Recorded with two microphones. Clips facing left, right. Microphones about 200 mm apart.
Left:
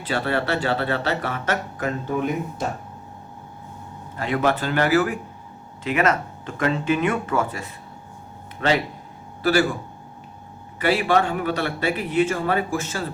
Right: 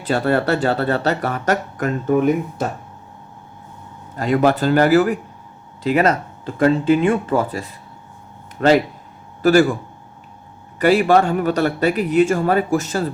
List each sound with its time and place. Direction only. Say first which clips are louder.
0.1 s speech: right 6 dB; 45° right (ahead or behind)
4.2 s speech: right 6 dB; 40° right (ahead or behind)
9.4 s speech: right 7 dB; 45° right (ahead or behind)
10.8 s speech: right 6 dB; 45° right (ahead or behind)